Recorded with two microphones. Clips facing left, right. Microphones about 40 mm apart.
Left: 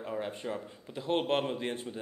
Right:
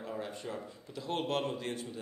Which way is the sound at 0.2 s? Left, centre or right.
Left.